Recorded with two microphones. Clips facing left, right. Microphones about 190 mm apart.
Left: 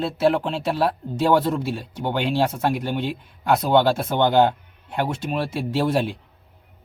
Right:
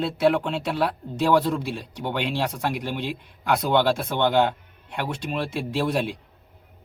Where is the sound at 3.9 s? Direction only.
40° left (ahead or behind).